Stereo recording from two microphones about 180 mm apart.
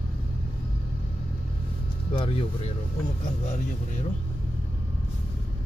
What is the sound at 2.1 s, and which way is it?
Speech, 30° left (ahead or behind).